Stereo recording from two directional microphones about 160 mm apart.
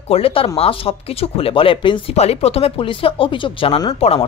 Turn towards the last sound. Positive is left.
turn(degrees=30)  # may be behind; listen again after turning